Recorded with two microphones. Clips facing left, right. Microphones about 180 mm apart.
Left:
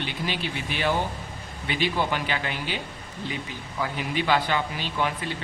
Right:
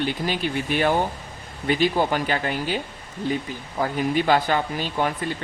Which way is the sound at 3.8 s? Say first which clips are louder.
Right 6 dB; 45° right (ahead or behind).